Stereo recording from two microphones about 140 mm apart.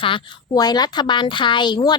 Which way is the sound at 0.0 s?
35° left (ahead or behind).